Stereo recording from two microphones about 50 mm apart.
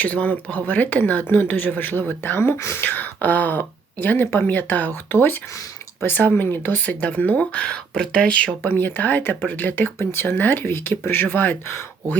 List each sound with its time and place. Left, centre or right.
0.0 s speech: left
2.6 s speech: left
2.8 s speech: left
4.4 s speech: left
5.1 s speech: left; by 8.5 s centre
8.6 s speech: left
10.0 s speech: left
11.3 s speech: left